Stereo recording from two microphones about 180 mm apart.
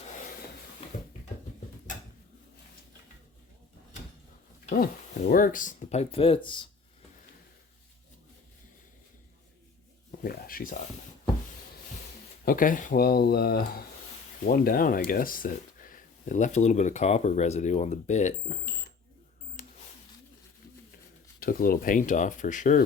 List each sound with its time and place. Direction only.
5.3 s speech: 50° left (ahead or behind); by 6.7 s 25° left (ahead or behind)
10.1 s speech: 55° left (ahead or behind)
12.5 s speech: 50° left (ahead or behind)
21.4 s speech: 55° left (ahead or behind)